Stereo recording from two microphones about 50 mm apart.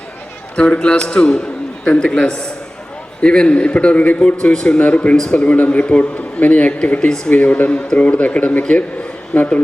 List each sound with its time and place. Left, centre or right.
0.5 s a man's voice: left
4.5 s a man's voice: centre
4.8 s speech: left
5.1 s a man's voice: centre